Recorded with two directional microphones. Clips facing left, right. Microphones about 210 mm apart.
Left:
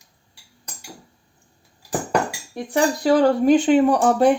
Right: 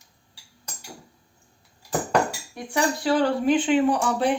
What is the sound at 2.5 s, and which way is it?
Speech, 40° left (ahead or behind).